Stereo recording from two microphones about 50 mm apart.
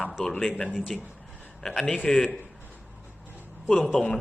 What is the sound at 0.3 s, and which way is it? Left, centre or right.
Speech, centre.